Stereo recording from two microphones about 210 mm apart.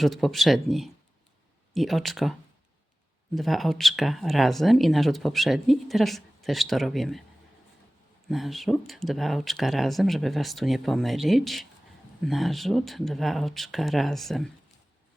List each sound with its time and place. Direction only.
0.0 s speech: centre (ahead or behind)
3.3 s speech: centre (ahead or behind)
8.3 s speech: centre (ahead or behind)